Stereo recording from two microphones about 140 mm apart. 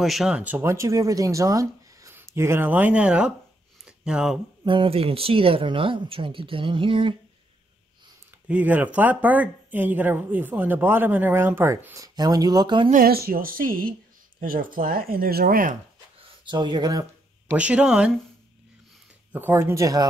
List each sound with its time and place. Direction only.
0.0 s speech: centre (ahead or behind)
3.8 s a sound: 5° right (ahead or behind)
4.6 s speech: 40° right (ahead or behind)
8.3 s speech: 10° right (ahead or behind); by 12.9 s 35° right (ahead or behind)
12.9 s speech: 90° right
16.2 s speech: 35° right (ahead or behind)
17.5 s speech: 10° right (ahead or behind)
19.3 s speech: 15° right (ahead or behind)